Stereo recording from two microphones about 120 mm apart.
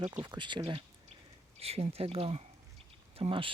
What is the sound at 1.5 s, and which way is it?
Speech, 60° right (ahead or behind).